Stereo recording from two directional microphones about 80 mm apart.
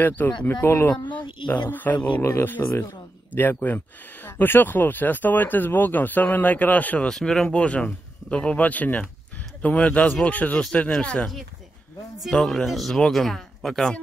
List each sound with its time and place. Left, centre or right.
0.4 s speech: centre
0.7 s speech: left
7.1 s speech: centre